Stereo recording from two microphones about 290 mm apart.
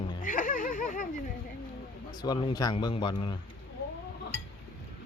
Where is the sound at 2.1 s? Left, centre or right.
Centre.